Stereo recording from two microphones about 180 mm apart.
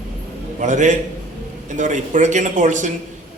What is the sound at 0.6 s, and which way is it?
A man's voice, 40° right (ahead or behind).